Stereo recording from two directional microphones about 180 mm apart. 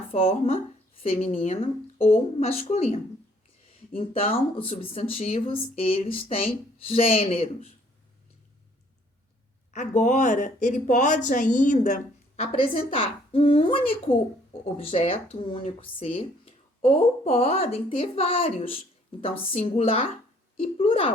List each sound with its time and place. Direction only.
0.1 s speech: 35° left (ahead or behind)
9.7 s speech: 45° left (ahead or behind)
12.4 s speech: 35° left (ahead or behind)